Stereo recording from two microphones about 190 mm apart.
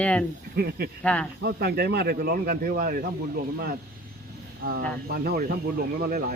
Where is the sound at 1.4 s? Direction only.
55° right (ahead or behind).